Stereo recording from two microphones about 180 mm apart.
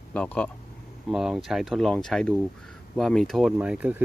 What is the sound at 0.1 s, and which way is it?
Speech, 5° left (ahead or behind).